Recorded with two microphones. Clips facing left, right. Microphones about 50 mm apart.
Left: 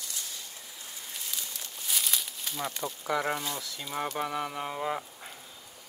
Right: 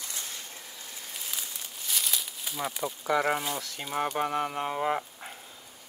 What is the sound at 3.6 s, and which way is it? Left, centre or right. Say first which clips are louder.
Speech: right 2 dB; right.